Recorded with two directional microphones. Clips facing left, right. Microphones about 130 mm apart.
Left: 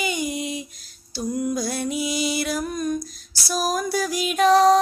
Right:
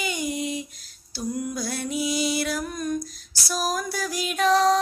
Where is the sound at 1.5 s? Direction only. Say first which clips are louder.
Left 3 dB; 20° left (ahead or behind).